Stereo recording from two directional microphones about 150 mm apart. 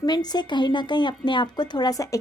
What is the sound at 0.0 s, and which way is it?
Speech, 25° left (ahead or behind).